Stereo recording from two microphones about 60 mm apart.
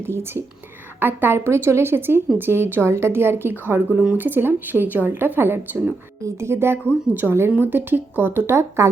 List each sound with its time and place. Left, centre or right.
0.1 s a woman's voice: right
1.5 s a woman's voice: right
8.4 s speech: right